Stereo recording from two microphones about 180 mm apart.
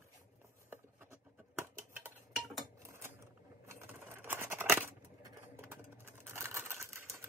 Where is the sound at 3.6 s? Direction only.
15° right (ahead or behind).